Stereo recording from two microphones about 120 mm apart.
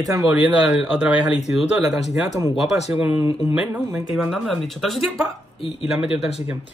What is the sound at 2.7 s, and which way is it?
Speech, 65° left (ahead or behind).